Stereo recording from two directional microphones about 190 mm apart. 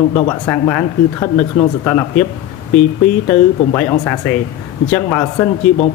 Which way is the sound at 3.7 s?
10° left (ahead or behind).